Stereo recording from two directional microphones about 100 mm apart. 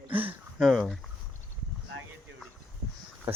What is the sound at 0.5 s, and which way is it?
Speech, centre (ahead or behind).